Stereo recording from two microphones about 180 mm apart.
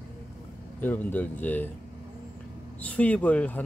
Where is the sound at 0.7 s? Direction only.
10° left (ahead or behind).